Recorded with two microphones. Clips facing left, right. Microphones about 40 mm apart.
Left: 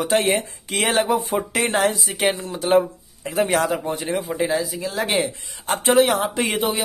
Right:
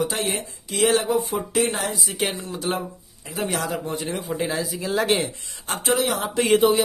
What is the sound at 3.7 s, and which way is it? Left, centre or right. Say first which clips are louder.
Speech: left 3 dB; centre.